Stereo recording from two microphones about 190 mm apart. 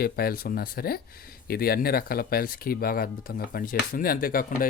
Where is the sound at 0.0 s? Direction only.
55° left (ahead or behind).